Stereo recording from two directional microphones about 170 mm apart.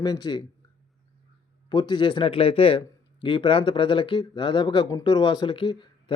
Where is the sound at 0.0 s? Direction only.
25° left (ahead or behind).